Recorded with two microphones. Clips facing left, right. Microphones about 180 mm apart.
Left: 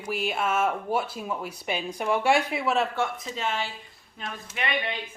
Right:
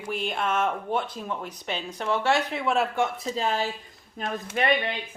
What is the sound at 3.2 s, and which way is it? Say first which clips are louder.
Speech: right 4 dB; 35° right (ahead or behind).